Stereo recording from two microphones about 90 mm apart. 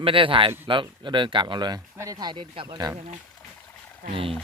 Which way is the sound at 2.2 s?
55° right (ahead or behind).